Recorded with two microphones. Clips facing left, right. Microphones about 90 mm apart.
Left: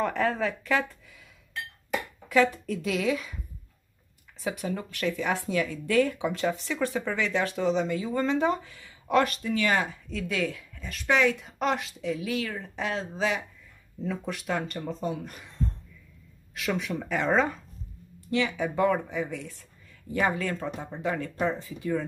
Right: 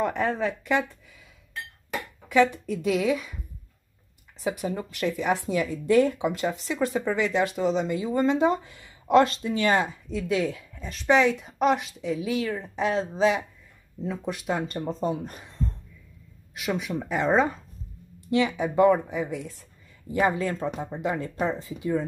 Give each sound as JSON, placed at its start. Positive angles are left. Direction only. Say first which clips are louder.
{"t": 0.0, "sound": "speech", "louder": "right 1 dB", "side_deg": -10}
{"t": 2.2, "sound": "a sound", "louder": "right 2 dB", "side_deg": 0}
{"t": 2.6, "sound": "speech", "louder": "right 3 dB", "side_deg": -10}
{"t": 4.6, "sound": "speech", "louder": "even", "side_deg": -15}
{"t": 6.1, "sound": "speech", "louder": "right 1 dB", "side_deg": -5}
{"t": 16.5, "sound": "speech", "louder": "right 1 dB", "side_deg": -15}